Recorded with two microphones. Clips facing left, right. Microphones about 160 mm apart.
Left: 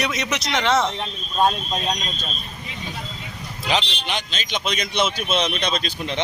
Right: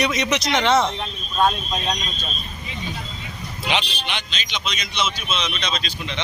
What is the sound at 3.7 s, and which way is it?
Speech, 40° left (ahead or behind).